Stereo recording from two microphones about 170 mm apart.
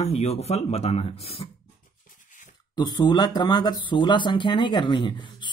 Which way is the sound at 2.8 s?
25° left (ahead or behind).